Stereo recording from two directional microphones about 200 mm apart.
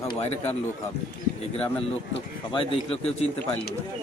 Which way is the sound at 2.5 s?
30° left (ahead or behind).